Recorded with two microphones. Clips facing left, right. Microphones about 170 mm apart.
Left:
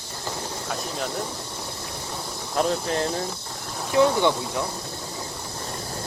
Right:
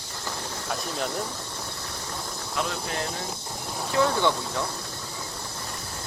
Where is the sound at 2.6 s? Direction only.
35° left (ahead or behind).